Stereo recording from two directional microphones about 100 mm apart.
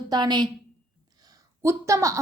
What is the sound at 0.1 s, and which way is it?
Speech, 45° right (ahead or behind).